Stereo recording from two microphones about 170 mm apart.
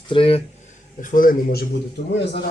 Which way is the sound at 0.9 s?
50° left (ahead or behind).